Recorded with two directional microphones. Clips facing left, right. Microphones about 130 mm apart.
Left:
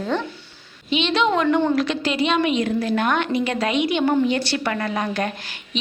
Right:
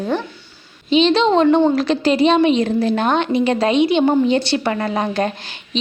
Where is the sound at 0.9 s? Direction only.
30° right (ahead or behind).